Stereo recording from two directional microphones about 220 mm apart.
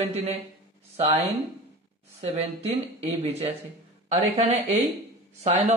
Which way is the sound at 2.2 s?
30° right (ahead or behind).